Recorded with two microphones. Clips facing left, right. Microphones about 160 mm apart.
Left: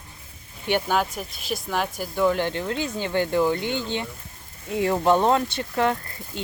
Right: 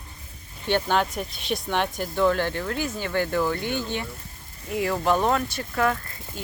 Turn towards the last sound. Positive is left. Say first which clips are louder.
# left 2 dB
turn(degrees=25)  # may be behind; listen again after turning